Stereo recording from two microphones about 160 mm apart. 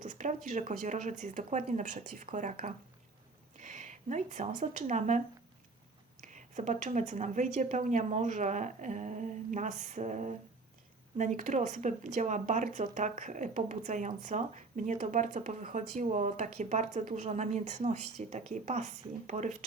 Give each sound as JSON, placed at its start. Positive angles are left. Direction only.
{"t": 0.0, "sound": "speech", "side_deg": -50}
{"t": 6.2, "sound": "speech", "side_deg": -50}